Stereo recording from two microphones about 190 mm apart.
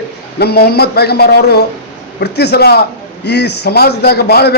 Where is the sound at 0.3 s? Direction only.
55° left (ahead or behind).